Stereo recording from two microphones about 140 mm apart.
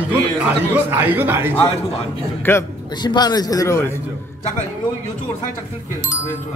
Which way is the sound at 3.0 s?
30° left (ahead or behind).